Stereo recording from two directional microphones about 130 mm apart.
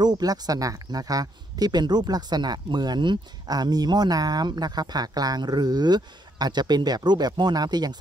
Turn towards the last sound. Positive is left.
turn(degrees=-30)  # may be behind; listen again after turning